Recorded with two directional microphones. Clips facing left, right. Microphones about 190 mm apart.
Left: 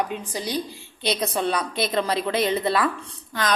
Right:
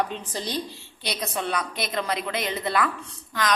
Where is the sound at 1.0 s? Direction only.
30° left (ahead or behind).